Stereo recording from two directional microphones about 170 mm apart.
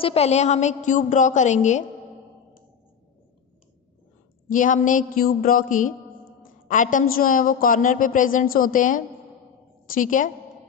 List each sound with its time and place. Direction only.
0.0 s a woman's voice: 40° left (ahead or behind)
4.5 s a woman's voice: 50° left (ahead or behind)